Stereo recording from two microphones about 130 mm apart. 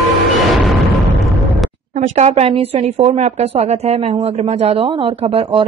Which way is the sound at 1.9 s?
65° right (ahead or behind).